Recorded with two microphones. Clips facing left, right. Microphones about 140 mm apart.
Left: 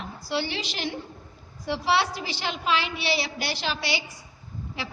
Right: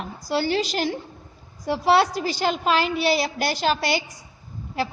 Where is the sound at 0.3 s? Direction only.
45° right (ahead or behind).